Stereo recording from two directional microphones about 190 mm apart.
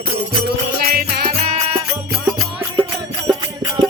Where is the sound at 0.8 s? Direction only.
55° right (ahead or behind).